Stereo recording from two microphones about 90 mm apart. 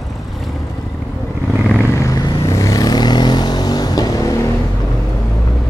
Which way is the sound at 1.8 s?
30° left (ahead or behind).